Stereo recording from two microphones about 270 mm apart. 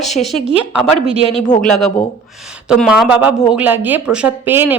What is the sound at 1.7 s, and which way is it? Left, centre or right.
A woman's voice, centre.